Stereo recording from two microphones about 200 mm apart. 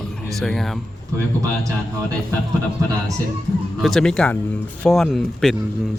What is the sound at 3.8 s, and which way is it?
A man's voice, 5° left (ahead or behind).